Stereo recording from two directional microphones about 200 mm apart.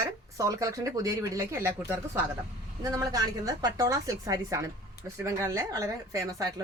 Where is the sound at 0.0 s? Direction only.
15° right (ahead or behind).